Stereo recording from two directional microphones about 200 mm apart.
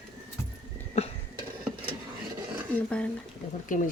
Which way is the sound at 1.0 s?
30° left (ahead or behind).